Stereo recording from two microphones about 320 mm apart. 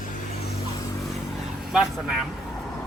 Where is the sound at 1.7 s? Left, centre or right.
Centre.